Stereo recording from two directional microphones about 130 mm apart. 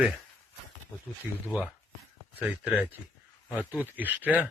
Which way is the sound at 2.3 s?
10° right (ahead or behind).